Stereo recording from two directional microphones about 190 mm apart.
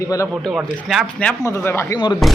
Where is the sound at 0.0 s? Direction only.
15° left (ahead or behind).